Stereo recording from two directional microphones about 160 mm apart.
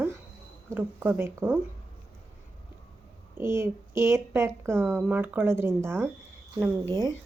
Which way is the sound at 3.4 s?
15° right (ahead or behind).